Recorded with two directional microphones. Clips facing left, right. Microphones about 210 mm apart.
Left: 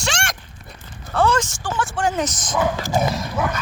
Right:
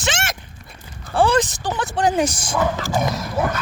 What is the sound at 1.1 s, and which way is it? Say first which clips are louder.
Speech: right 2 dB; 30° right (ahead or behind).